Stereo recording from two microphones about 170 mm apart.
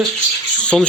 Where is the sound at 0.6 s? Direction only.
5° left (ahead or behind).